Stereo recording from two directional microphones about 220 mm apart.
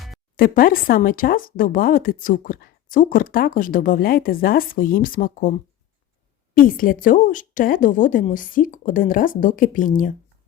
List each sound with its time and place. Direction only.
0.3 s speech: 40° left (ahead or behind)